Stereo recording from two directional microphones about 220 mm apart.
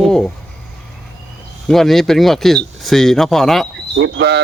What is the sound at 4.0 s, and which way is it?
Speech, 50° right (ahead or behind).